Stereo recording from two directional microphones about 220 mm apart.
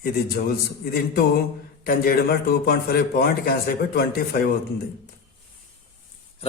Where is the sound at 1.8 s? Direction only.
45° left (ahead or behind).